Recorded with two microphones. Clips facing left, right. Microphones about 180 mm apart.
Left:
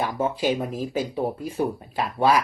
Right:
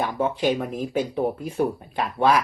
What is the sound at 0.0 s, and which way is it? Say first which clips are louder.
Speech: right 1 dB; 5° left (ahead or behind).